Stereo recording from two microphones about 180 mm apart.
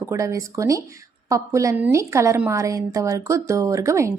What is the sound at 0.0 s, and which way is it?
Speech, 15° right (ahead or behind).